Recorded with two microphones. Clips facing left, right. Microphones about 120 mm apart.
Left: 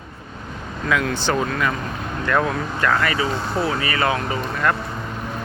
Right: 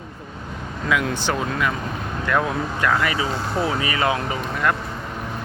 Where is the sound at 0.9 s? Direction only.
10° right (ahead or behind).